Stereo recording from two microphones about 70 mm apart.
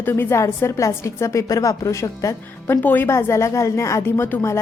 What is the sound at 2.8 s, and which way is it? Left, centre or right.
Speech, left.